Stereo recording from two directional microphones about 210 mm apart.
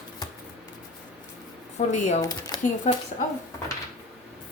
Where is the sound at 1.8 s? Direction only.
30° left (ahead or behind).